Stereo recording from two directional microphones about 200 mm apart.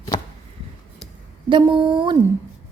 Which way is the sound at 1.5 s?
25° right (ahead or behind).